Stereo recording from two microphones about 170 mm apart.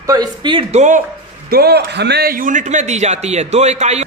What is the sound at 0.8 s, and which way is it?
Speech, 50° right (ahead or behind).